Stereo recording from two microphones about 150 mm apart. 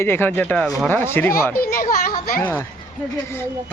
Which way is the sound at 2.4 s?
10° left (ahead or behind).